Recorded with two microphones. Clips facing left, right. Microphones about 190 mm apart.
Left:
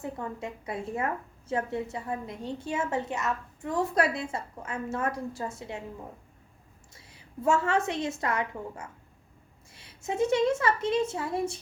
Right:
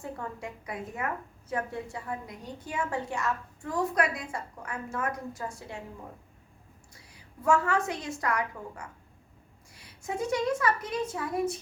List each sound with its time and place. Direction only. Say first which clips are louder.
0.0 s a woman's voice: left 2 dB; 20° left (ahead or behind)
6.9 s a woman's voice: left 8 dB; 25° left (ahead or behind)